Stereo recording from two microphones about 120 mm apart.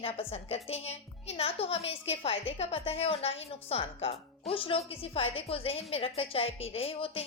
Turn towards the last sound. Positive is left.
turn(degrees=50)  # may be behind; listen again after turning